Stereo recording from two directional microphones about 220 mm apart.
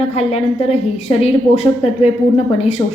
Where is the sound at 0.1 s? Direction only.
30° left (ahead or behind).